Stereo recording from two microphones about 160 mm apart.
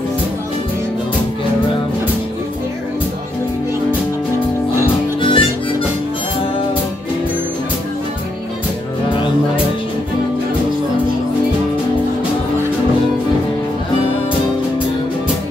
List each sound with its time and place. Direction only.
5.2 s harmonica: 30° left (ahead or behind)